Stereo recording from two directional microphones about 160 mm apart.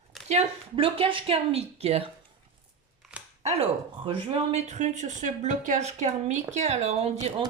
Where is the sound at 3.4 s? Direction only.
40° right (ahead or behind).